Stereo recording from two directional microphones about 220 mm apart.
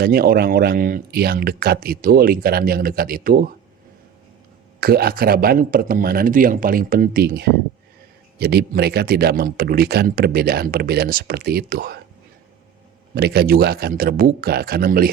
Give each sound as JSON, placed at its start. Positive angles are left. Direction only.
{"t": 0.0, "sound": "speech", "side_deg": -45}
{"t": 4.8, "sound": "speech", "side_deg": -45}
{"t": 13.1, "sound": "speech", "side_deg": -45}